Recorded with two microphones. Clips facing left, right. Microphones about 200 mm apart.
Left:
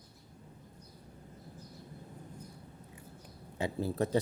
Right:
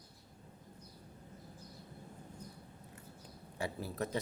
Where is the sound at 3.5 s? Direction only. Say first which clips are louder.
Left 6 dB; 25° left (ahead or behind).